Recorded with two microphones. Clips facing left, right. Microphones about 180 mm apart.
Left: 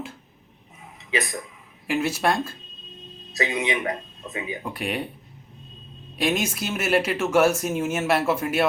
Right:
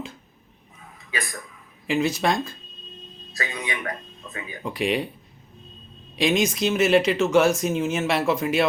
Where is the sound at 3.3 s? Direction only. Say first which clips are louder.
Left 6 dB; 20° left (ahead or behind).